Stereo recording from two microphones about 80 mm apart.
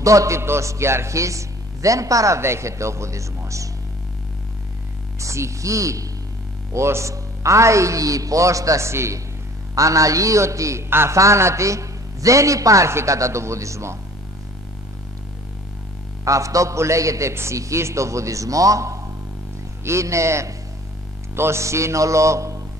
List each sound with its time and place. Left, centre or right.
0.0 s a man's voice: right
5.2 s a man's voice: right
16.3 s a man's voice: right